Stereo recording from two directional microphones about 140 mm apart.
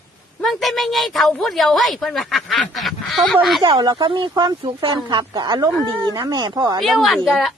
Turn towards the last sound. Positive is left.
turn(degrees=0)  # may be behind; listen again after turning